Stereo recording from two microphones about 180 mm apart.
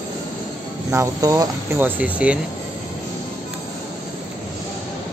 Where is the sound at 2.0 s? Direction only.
5° right (ahead or behind).